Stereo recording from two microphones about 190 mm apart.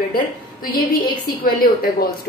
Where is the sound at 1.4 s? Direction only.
50° left (ahead or behind).